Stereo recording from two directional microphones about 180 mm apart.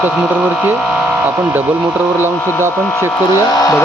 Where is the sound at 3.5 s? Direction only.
20° left (ahead or behind).